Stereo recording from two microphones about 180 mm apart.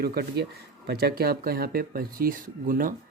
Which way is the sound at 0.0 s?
60° right (ahead or behind).